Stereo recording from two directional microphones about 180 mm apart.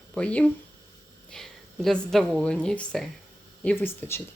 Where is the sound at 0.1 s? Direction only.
5° left (ahead or behind).